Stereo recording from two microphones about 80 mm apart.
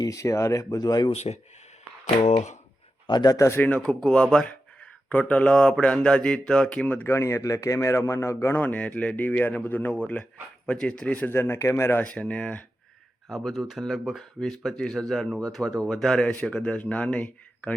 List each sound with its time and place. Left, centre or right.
0.0 s speech: left
3.1 s a man's voice: left
3.3 s speech: left
3.8 s speech: centre
6.8 s speech: left
8.5 s speech: left
11.3 s speech: left
12.0 s speech: centre
13.2 s speech: centre